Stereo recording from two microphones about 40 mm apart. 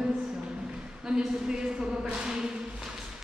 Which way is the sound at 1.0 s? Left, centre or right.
Centre.